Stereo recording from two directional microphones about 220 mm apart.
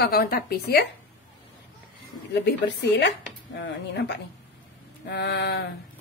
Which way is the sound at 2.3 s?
50° left (ahead or behind).